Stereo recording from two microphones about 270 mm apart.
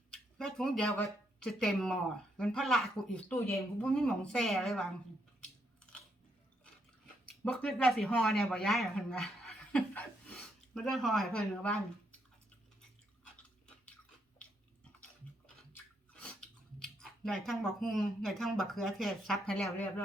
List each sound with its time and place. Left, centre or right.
0.1 s a sound: centre
1.5 s speech: centre
7.4 s speech: centre
16.1 s speech: centre